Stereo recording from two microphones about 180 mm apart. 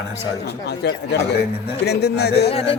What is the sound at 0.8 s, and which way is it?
Speech, 65° left (ahead or behind).